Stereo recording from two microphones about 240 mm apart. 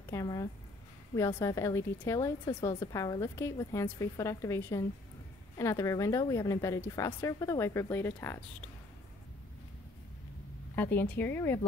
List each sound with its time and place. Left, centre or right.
0.1 s a woman's voice: centre
10.8 s a woman's voice: centre